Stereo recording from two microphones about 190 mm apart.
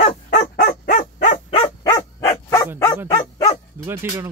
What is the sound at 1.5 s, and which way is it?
Dog, 20° left (ahead or behind).